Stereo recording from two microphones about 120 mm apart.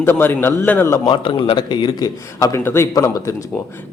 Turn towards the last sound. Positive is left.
turn(degrees=25)  # may be behind; listen again after turning